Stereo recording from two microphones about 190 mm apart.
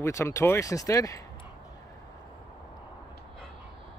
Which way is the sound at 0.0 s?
15° left (ahead or behind).